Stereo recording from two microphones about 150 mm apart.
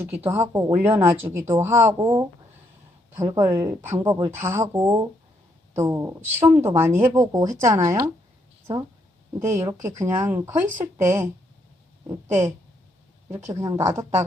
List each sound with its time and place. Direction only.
0.3 s speech: 20° right (ahead or behind)
8.7 s speech: 35° right (ahead or behind)
9.4 s speech: 20° right (ahead or behind)